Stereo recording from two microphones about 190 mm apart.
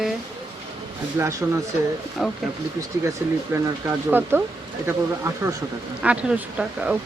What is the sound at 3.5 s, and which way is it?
Speech, 15° right (ahead or behind).